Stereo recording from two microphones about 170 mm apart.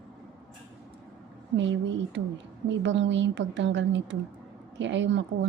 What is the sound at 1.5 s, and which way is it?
A woman's voice, 90° right.